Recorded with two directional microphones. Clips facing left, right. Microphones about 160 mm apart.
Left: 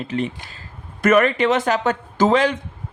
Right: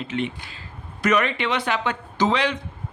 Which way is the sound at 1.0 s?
50° left (ahead or behind).